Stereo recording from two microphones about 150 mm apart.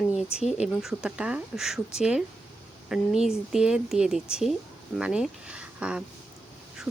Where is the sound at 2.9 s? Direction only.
5° right (ahead or behind).